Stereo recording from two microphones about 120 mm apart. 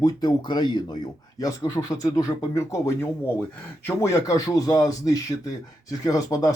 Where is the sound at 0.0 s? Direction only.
35° left (ahead or behind).